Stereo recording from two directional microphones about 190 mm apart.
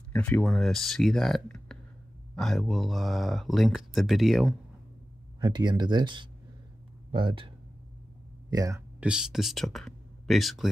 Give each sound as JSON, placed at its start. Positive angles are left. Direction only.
{"t": 0.1, "sound": "speech", "side_deg": 10}
{"t": 5.4, "sound": "speech", "side_deg": -25}
{"t": 9.0, "sound": "speech", "side_deg": -5}